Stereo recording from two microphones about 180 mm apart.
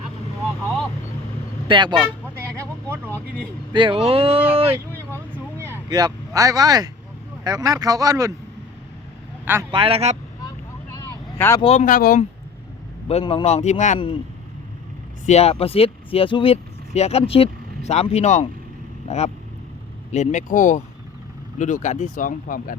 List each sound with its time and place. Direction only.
1.6 s speech: 25° right (ahead or behind)
3.7 s speech: 25° right (ahead or behind)
5.1 s vehicle: 10° right (ahead or behind)
5.9 s speech: 20° right (ahead or behind)
9.7 s speech: 30° right (ahead or behind)
11.3 s a man's voice: 15° left (ahead or behind)
11.6 s speech: 40° left (ahead or behind)
13.1 s speech: 30° left (ahead or behind)
15.3 s speech: 35° left (ahead or behind); by 22.8 s 50° left (ahead or behind)